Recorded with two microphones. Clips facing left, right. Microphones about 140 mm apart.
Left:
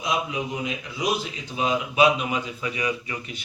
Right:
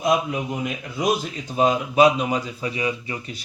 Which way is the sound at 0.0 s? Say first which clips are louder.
Right 5 dB; 50° right (ahead or behind).